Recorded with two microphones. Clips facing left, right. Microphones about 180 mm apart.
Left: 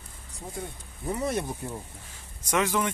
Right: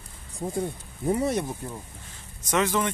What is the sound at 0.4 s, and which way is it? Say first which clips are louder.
Speech: right 9 dB; 25° right (ahead or behind).